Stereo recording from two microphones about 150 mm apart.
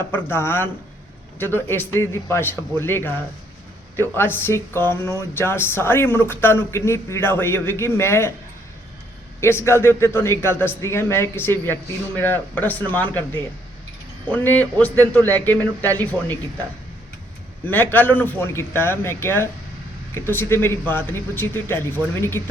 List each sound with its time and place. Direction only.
0.1 s a man's voice: 15° left (ahead or behind)
9.4 s a man's voice: 15° left (ahead or behind)
17.7 s a man's voice: 10° left (ahead or behind)